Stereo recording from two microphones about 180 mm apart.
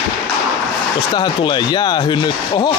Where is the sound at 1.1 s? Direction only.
25° left (ahead or behind).